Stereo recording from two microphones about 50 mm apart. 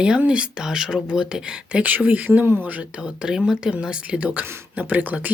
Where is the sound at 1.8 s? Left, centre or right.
Right.